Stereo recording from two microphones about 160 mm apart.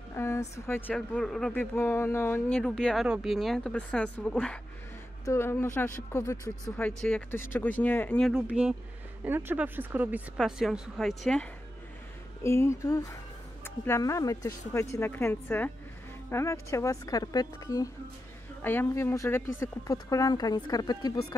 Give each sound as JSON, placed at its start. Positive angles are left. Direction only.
{"t": 0.1, "sound": "speech", "side_deg": 15}
{"t": 5.2, "sound": "speech", "side_deg": 15}
{"t": 7.0, "sound": "speech", "side_deg": 10}
{"t": 8.3, "sound": "speech", "side_deg": -5}
{"t": 12.4, "sound": "speech", "side_deg": 15}
{"t": 18.6, "sound": "speech", "side_deg": 10}